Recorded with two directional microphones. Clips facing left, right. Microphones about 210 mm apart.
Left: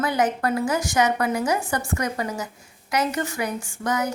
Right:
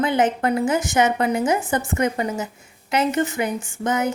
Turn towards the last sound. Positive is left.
turn(degrees=-25)  # may be behind; listen again after turning